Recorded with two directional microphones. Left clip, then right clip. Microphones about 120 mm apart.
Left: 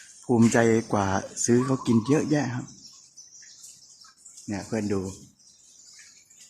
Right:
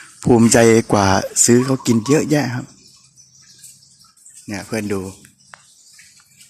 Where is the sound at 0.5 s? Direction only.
40° right (ahead or behind).